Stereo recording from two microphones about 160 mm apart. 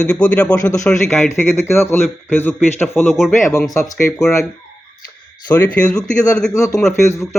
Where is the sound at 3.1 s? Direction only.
Centre (ahead or behind).